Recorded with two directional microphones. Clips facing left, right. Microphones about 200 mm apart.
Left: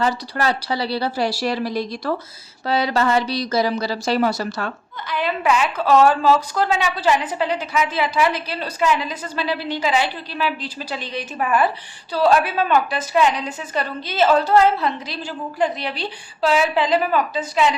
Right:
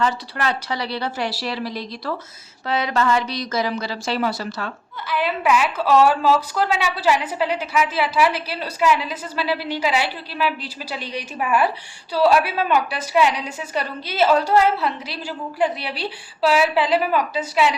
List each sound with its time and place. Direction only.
0.0 s a woman's voice: 35° left (ahead or behind)
2.6 s a woman's voice: 35° left (ahead or behind)
5.0 s a woman's voice: 5° right (ahead or behind)